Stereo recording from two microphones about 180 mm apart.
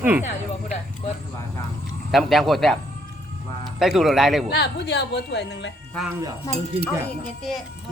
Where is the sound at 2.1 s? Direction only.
Centre (ahead or behind).